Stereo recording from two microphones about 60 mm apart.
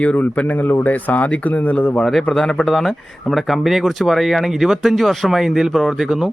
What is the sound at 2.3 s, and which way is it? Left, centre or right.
Speech, centre.